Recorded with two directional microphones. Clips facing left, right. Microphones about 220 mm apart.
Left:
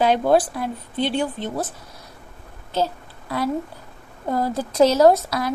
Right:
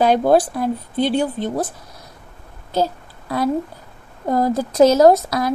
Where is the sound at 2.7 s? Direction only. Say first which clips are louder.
Right 3 dB; 40° right (ahead or behind).